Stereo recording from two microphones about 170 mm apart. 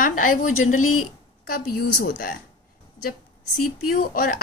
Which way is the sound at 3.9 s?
55° left (ahead or behind).